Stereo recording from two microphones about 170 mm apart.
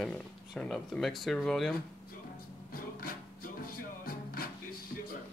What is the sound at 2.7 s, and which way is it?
Music, 60° left (ahead or behind).